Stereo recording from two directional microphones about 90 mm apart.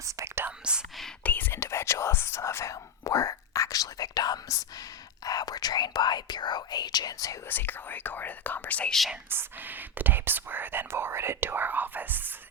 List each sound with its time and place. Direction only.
0.0 s whispering: 35° right (ahead or behind)
0.6 s speech: 10° right (ahead or behind)
1.2 s whispering: 20° left (ahead or behind); by 4.6 s 45° left (ahead or behind)
5.2 s speech: 45° left (ahead or behind)
7.4 s speech: 20° left (ahead or behind)
8.9 s speech: centre (ahead or behind)
9.3 s speech: 20° right (ahead or behind)